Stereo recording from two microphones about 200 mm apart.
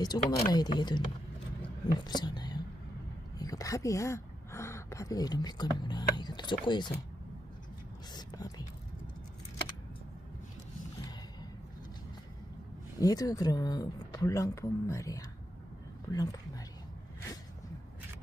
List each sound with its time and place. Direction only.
0.0 s speech: 20° left (ahead or behind)
8.1 s whispering: 20° left (ahead or behind)
13.0 s speech: 15° left (ahead or behind)